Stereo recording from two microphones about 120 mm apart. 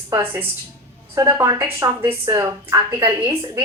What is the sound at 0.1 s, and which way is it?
A woman's voice, 20° right (ahead or behind).